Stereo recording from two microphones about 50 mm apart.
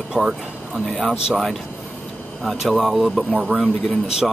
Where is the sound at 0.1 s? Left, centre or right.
Centre.